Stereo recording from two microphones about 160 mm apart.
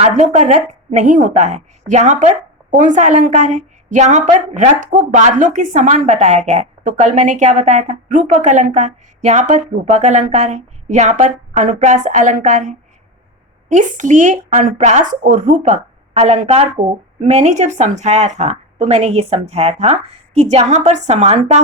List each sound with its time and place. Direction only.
0.0 s a woman's voice: 45° right (ahead or behind)